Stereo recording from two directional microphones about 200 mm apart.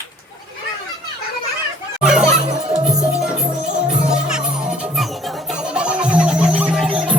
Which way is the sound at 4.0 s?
5° right (ahead or behind).